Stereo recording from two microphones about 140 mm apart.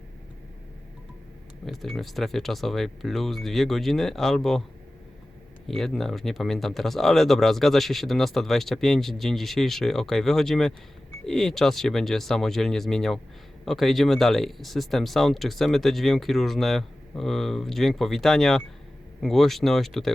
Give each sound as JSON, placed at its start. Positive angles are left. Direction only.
{"t": 1.6, "sound": "speech", "side_deg": 0}
{"t": 5.6, "sound": "speech", "side_deg": 0}